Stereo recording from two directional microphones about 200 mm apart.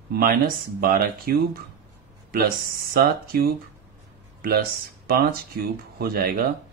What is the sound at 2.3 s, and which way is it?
Speech, 50° right (ahead or behind).